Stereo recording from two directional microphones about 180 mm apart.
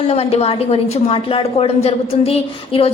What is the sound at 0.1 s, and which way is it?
A woman's voice, 35° left (ahead or behind).